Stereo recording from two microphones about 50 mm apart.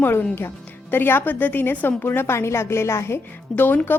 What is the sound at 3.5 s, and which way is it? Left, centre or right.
Speech, left.